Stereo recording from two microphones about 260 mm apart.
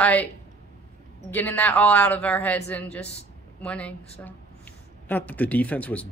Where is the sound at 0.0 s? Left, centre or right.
Centre.